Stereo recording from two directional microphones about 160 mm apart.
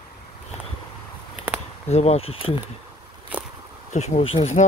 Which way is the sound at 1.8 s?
40° left (ahead or behind).